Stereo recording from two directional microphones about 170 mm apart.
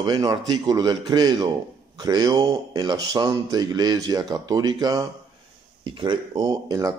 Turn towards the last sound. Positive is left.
turn(degrees=-20)  # may be behind; listen again after turning